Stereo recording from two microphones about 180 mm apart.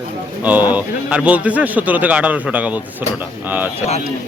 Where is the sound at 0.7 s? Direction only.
5° right (ahead or behind).